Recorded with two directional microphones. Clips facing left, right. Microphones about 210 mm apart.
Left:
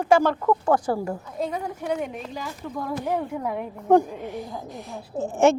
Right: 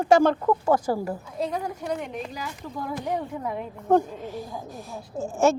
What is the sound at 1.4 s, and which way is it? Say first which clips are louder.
A woman's voice: even; 5° left (ahead or behind).